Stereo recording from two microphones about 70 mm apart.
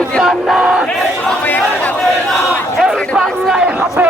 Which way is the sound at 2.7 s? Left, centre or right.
Centre.